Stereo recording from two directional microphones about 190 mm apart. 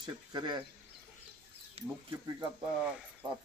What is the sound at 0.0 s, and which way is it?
Speech, 20° right (ahead or behind).